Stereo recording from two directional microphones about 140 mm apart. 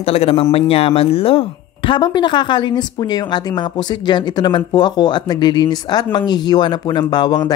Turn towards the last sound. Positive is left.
turn(degrees=30)  # may be behind; listen again after turning